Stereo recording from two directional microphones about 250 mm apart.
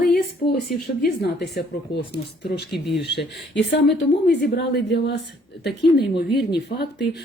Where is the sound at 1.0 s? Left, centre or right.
Left.